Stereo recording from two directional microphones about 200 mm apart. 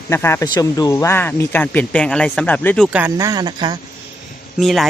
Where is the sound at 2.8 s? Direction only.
5° right (ahead or behind).